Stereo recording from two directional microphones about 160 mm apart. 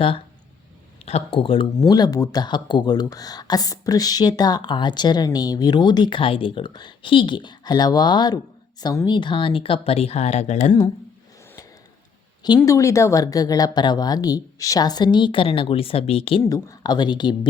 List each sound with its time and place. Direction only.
1.0 s speech: 35° left (ahead or behind)
1.9 s speech: 25° left (ahead or behind); by 10.7 s 45° left (ahead or behind)
12.5 s speech: 20° left (ahead or behind); by 16.4 s 35° left (ahead or behind)
16.4 s speech: 15° left (ahead or behind)